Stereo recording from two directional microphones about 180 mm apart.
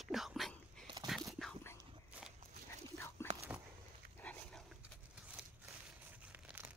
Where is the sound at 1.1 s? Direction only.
Centre (ahead or behind).